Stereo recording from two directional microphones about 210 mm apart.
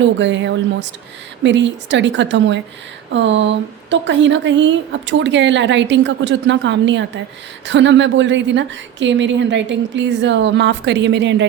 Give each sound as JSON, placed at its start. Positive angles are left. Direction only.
{"t": 0.0, "sound": "a woman's voice", "side_deg": -60}